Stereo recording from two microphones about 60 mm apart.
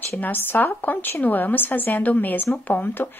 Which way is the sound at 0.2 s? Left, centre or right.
Left.